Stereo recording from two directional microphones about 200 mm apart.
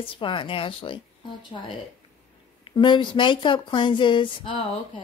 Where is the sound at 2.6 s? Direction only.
25° left (ahead or behind).